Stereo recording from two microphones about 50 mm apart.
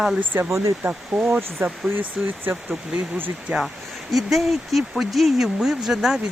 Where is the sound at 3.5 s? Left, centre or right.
Right.